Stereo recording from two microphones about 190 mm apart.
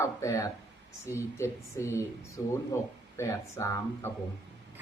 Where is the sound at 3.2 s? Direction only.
15° left (ahead or behind).